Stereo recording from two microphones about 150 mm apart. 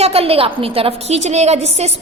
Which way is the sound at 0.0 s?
40° right (ahead or behind).